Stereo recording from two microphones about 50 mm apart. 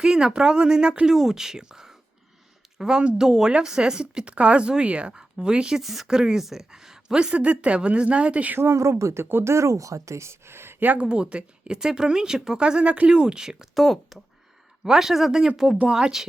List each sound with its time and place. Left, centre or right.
0.0 s a woman's voice: centre
1.1 s a woman's voice: centre
5.7 s a woman's voice: centre; by 8.5 s right
8.7 s speech: right
9.3 s speech: right
10.8 s speech: right
11.0 s a woman's voice: centre
13.7 s a woman's voice: centre